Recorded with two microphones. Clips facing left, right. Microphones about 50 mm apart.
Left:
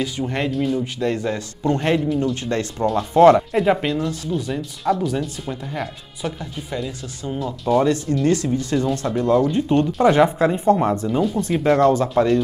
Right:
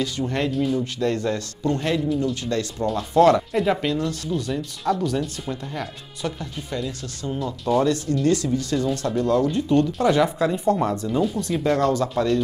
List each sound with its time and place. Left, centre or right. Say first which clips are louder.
0.0 s speech: left 1 dB; centre
0.5 s speech: left 1 dB; centre
1.6 s speech: left 5 dB; left
3.5 s speech: left 3 dB; centre
7.8 s speech: left 2 dB; centre